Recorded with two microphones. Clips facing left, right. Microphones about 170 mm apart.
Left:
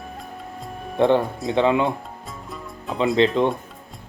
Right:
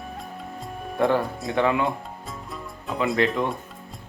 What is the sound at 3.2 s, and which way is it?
Speech, 25° left (ahead or behind).